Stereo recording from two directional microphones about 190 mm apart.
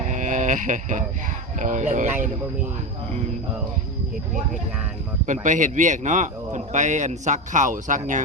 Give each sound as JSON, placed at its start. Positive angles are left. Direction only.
{"t": 0.1, "sound": "a sound", "side_deg": -40}
{"t": 1.5, "sound": "speech", "side_deg": -40}
{"t": 5.2, "sound": "speech", "side_deg": -40}